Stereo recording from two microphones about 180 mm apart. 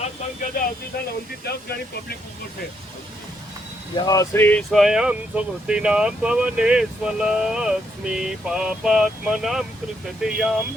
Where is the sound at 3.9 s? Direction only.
20° left (ahead or behind).